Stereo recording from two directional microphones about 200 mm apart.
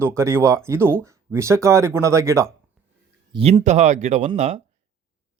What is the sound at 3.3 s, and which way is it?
Speech, 30° right (ahead or behind).